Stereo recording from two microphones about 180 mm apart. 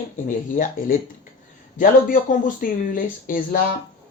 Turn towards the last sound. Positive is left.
turn(degrees=50)  # may be behind; listen again after turning